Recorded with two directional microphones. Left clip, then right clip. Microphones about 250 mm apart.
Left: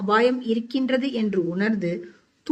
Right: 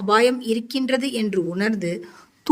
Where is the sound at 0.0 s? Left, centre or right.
Right.